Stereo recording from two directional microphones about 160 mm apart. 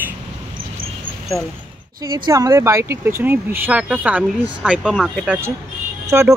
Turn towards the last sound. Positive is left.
turn(degrees=-20)  # may be behind; listen again after turning